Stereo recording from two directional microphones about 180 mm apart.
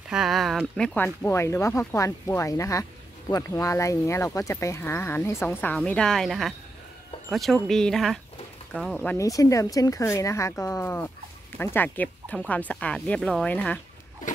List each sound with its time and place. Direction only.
0.1 s speech: centre (ahead or behind)